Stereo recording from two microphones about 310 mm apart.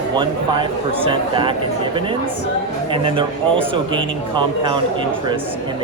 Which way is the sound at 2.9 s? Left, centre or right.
Centre.